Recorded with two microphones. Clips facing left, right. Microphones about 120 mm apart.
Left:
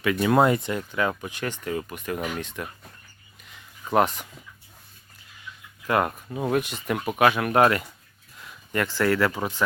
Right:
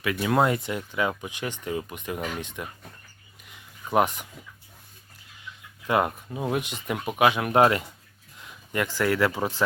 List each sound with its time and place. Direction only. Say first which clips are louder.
0.0 s speech: left 3 dB; 5° right (ahead or behind)
3.9 s speech: left 1 dB; 15° right (ahead or behind)
5.9 s speech: even; 15° right (ahead or behind)
6.2 s speech: left 2 dB; centre (ahead or behind)
6.5 s speech: left 4 dB; 20° right (ahead or behind)